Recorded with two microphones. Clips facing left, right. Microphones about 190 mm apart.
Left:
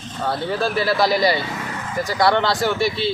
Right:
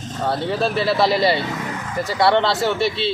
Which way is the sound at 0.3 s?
Centre (ahead or behind).